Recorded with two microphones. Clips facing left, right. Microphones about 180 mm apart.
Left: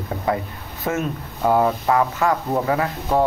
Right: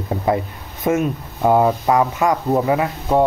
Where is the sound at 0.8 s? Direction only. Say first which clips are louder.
Right 5 dB; 15° right (ahead or behind).